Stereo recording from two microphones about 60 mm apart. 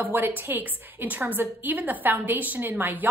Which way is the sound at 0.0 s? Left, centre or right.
Right.